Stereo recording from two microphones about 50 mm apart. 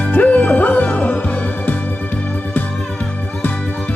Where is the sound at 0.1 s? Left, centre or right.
Left.